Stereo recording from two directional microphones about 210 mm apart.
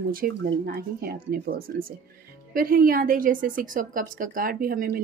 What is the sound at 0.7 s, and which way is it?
A woman's voice, 45° right (ahead or behind).